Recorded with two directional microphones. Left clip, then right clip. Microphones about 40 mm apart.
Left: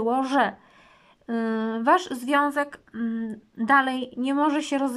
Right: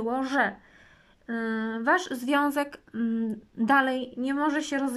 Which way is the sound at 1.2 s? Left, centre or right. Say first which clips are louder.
Left 3 dB; left.